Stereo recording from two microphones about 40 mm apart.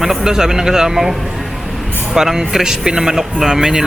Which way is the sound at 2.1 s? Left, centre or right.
Centre.